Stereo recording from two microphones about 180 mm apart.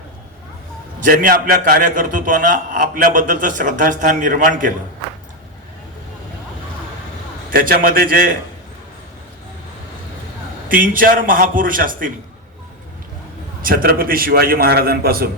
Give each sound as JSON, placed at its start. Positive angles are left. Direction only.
{"t": 1.0, "sound": "a man's voice", "side_deg": -50}
{"t": 7.5, "sound": "a man's voice", "side_deg": -55}
{"t": 10.7, "sound": "a man's voice", "side_deg": -50}
{"t": 13.6, "sound": "a man's voice", "side_deg": -50}